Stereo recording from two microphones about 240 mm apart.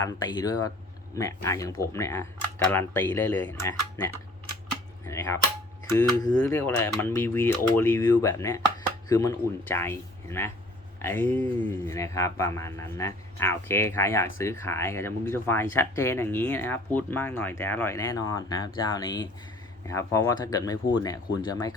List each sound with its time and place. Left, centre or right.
0.0 s speech: centre